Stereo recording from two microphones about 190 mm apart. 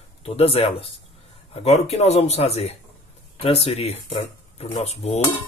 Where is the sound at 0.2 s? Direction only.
30° left (ahead or behind).